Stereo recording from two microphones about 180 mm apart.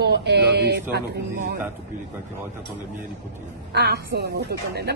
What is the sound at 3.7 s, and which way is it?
Speech, 65° right (ahead or behind).